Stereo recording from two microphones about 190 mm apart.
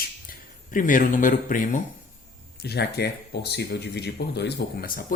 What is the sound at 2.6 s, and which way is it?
Speech, 60° left (ahead or behind).